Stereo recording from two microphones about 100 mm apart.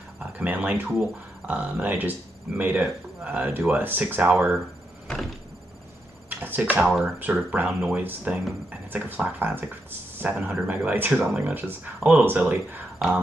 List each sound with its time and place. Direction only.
0.2 s speech: 15° right (ahead or behind)
6.4 s a sound: 20° right (ahead or behind)
6.8 s speech: 5° right (ahead or behind)
7.2 s speech: 15° right (ahead or behind)